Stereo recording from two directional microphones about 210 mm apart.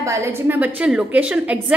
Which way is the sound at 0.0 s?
15° right (ahead or behind).